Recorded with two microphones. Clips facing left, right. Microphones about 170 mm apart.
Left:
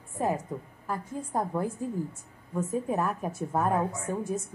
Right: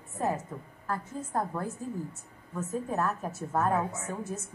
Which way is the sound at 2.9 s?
10° left (ahead or behind).